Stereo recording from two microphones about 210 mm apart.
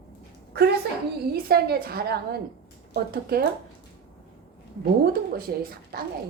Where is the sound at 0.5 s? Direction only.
50° right (ahead or behind).